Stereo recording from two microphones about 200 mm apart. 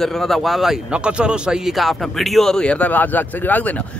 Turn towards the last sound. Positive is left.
turn(degrees=10)  # may be behind; listen again after turning